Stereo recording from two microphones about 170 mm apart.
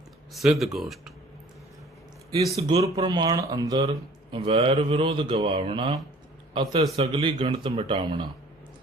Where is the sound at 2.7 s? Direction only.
20° right (ahead or behind).